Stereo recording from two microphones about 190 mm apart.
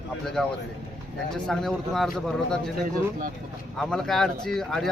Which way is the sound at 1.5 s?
Centre (ahead or behind).